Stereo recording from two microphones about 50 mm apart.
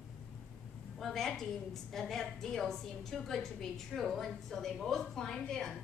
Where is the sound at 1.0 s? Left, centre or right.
Centre.